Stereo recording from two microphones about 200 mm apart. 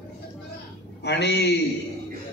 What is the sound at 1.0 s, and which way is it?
Speech, 55° left (ahead or behind).